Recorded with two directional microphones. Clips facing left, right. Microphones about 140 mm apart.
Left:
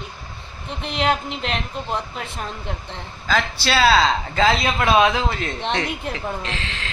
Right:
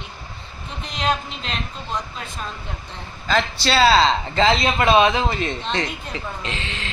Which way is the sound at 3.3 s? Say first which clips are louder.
Right 1 dB; 5° left (ahead or behind).